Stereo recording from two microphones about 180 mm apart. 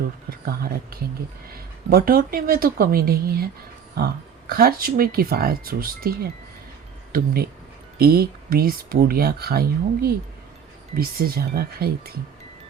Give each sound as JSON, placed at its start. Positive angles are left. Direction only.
{"t": 0.3, "sound": "speech", "side_deg": -60}